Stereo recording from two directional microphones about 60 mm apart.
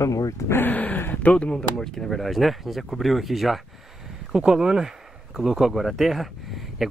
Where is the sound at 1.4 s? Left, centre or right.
Centre.